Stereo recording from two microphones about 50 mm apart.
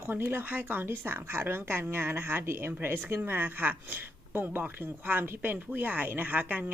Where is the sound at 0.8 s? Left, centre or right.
Right.